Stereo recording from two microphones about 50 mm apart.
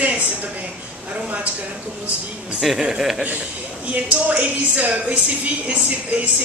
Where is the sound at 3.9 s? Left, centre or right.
Right.